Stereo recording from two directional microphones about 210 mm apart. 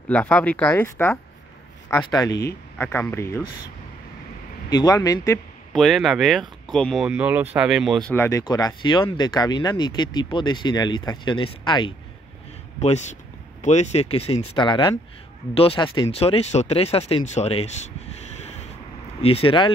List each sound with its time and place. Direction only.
0.1 s speech: 5° left (ahead or behind)
4.6 s speech: 15° left (ahead or behind)
5.7 s speech: centre (ahead or behind)
8.1 s speech: 15° left (ahead or behind)
13.6 s speech: 35° left (ahead or behind)
18.2 s a sound: 30° left (ahead or behind)
19.2 s speech: 25° left (ahead or behind)